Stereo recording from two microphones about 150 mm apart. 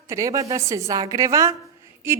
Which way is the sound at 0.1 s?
20° right (ahead or behind).